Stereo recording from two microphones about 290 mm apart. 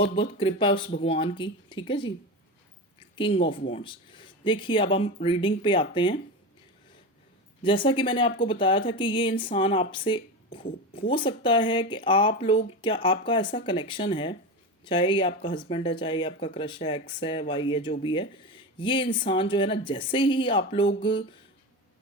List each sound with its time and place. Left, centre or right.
0.0 s speech: centre
3.0 s a sound: centre
3.7 s speech: centre
7.6 s speech: centre